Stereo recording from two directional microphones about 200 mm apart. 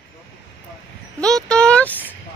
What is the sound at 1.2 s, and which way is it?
Speech, 5° left (ahead or behind).